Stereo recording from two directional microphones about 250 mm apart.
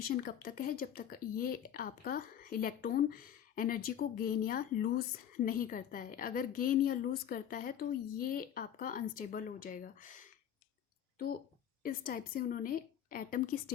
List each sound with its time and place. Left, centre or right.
0.2 s speech: left
11.8 s speech: left